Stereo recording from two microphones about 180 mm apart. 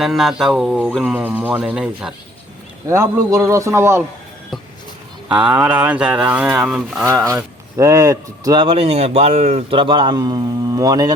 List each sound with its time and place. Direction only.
0.0 s speech: centre (ahead or behind)
2.9 s speech: 15° right (ahead or behind)
5.3 s speech: 5° right (ahead or behind)
7.3 s speech: 15° right (ahead or behind)